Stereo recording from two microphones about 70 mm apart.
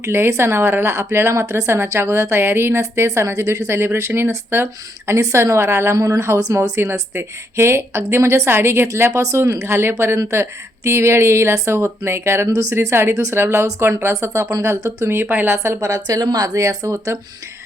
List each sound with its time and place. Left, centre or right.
0.0 s speech: right
15.5 s speech: right
16.0 s speech: right